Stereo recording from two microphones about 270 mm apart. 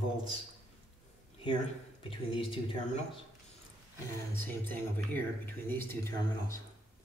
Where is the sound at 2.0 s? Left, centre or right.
Centre.